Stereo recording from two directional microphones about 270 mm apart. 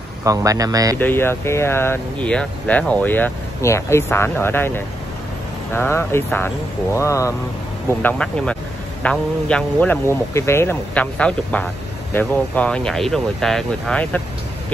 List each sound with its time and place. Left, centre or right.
0.2 s speech: centre
0.9 s a man's voice: centre